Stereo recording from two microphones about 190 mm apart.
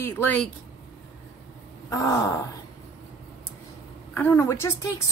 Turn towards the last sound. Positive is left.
turn(degrees=15)  # may be behind; listen again after turning